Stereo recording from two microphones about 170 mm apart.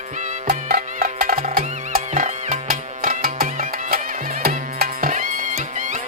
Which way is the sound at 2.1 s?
45° right (ahead or behind).